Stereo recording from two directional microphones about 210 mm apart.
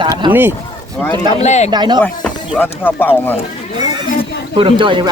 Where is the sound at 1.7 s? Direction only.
20° right (ahead or behind).